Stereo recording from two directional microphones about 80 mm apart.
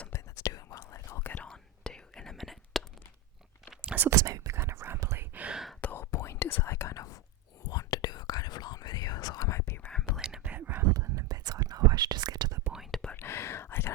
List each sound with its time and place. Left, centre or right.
0.1 s whispering: left
1.2 s whispering: left
1.5 s whispering: centre
3.8 s whispering: centre
4.1 s whispering: right
5.5 s whispering: centre
5.8 s whispering: left
9.5 s whispering: left
10.2 s whispering: centre
10.4 s whispering: right
11.0 s whispering: right
11.3 s whispering: right
12.9 s whispering: centre
13.1 s whispering: left